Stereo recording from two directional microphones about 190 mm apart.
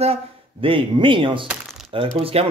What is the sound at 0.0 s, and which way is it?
Speech, 30° right (ahead or behind).